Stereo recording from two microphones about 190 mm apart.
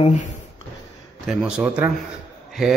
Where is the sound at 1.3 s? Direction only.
5° right (ahead or behind).